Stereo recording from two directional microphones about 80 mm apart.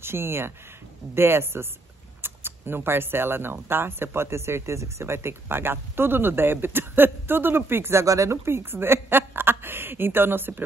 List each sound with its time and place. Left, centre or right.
0.0 s speech: right